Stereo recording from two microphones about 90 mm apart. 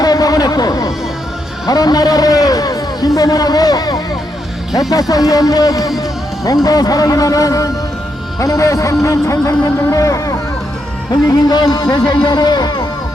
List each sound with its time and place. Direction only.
0.0 s a sound: 45° left (ahead or behind)
1.6 s a man's voice: 45° left (ahead or behind)
11.4 s speech: 50° left (ahead or behind)